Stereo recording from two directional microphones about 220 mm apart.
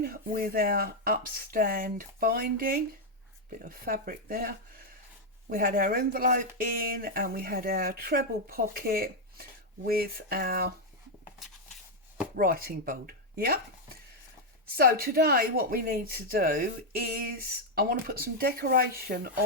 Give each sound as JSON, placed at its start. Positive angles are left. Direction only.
{"t": 0.0, "sound": "speech", "side_deg": -40}
{"t": 11.3, "sound": "a sound", "side_deg": 0}
{"t": 12.4, "sound": "speech", "side_deg": -40}
{"t": 14.8, "sound": "speech", "side_deg": -45}